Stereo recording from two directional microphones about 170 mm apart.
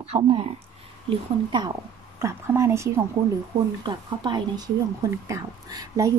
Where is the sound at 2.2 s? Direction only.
15° right (ahead or behind).